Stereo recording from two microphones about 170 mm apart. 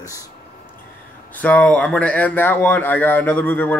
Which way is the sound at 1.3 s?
10° left (ahead or behind).